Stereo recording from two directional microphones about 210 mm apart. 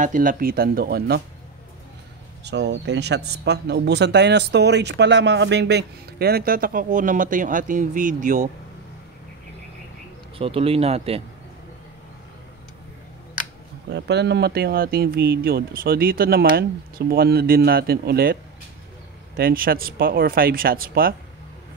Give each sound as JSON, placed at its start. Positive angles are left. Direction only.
{"t": 0.0, "sound": "speech", "side_deg": -40}
{"t": 2.4, "sound": "speech", "side_deg": -55}
{"t": 10.3, "sound": "speech", "side_deg": -25}
{"t": 13.9, "sound": "speech", "side_deg": -55}